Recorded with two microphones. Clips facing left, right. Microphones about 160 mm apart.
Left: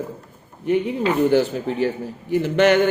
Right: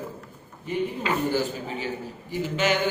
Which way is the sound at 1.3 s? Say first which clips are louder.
Left 8 dB; 65° left (ahead or behind).